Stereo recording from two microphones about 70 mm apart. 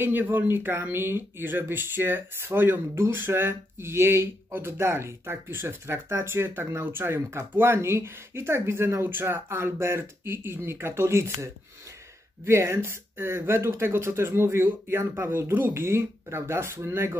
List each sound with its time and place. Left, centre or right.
0.0 s speech: right